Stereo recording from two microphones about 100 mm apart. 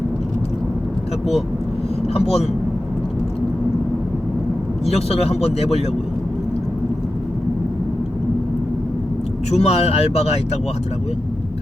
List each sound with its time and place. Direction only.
2.1 s speech: 90° left
4.9 s speech: 90° left
9.5 s speech: 90° left